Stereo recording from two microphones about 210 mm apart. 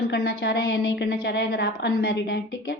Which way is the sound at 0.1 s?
50° left (ahead or behind).